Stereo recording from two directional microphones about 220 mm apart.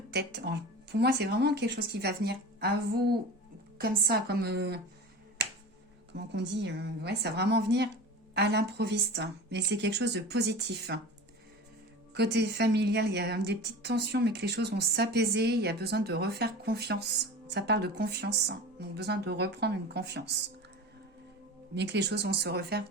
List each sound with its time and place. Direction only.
0.1 s a woman's voice: 50° right (ahead or behind)
6.1 s a woman's voice: 50° right (ahead or behind)
12.1 s a woman's voice: 50° right (ahead or behind)
21.8 s a woman's voice: 50° right (ahead or behind)